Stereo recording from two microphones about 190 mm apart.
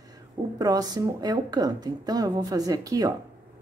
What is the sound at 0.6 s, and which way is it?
A woman's voice, 20° right (ahead or behind).